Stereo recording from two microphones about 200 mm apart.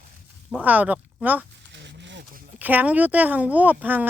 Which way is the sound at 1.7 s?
60° right (ahead or behind).